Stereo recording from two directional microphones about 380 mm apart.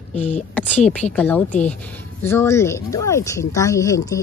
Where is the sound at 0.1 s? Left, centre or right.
Centre.